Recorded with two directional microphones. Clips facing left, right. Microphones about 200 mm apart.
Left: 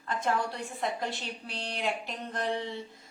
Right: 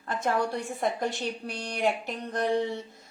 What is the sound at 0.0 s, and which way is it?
A woman's voice, 40° right (ahead or behind).